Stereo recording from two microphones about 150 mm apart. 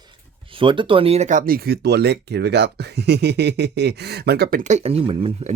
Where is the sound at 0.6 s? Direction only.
35° right (ahead or behind); by 4.6 s 90° right.